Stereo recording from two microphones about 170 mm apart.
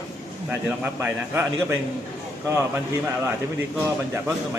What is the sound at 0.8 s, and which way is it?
Speech, 10° right (ahead or behind).